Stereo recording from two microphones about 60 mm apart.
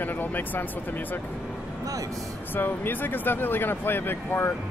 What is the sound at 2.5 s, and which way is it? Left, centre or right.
Speech, left.